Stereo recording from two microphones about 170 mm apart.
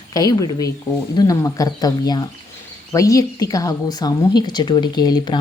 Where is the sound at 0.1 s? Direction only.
20° left (ahead or behind).